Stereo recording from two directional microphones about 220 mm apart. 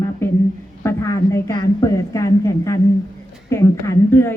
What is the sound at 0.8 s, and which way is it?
A woman's voice, 15° left (ahead or behind).